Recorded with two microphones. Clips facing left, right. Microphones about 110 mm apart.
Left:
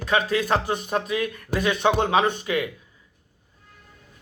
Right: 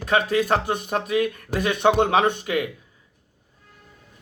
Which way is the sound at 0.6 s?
60° right (ahead or behind).